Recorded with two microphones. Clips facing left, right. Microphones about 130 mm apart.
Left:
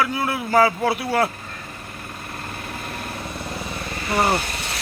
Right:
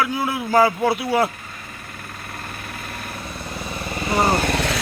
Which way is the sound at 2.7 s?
20° left (ahead or behind).